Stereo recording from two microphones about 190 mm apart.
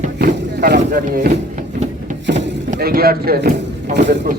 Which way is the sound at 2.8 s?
55° right (ahead or behind).